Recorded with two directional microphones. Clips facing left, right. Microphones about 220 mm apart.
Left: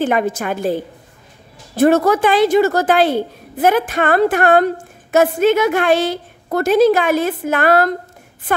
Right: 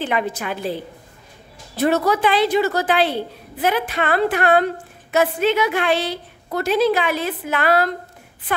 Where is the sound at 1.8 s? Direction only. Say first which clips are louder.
Left 5 dB; 50° left (ahead or behind).